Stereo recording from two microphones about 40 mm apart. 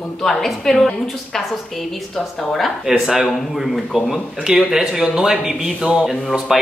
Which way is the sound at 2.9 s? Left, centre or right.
Centre.